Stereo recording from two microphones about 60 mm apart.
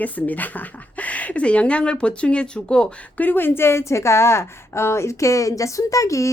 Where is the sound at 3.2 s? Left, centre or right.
Left.